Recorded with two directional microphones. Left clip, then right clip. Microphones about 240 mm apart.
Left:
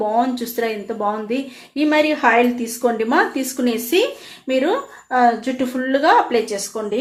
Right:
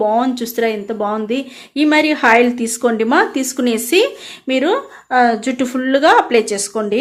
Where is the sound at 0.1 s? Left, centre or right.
Right.